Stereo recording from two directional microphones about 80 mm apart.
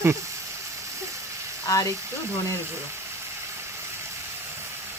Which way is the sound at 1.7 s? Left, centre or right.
Left.